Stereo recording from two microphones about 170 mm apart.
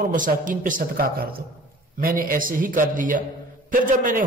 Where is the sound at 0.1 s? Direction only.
50° right (ahead or behind).